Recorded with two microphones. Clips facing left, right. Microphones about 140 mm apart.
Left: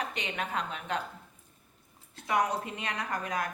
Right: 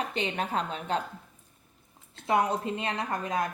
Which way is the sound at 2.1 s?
30° right (ahead or behind).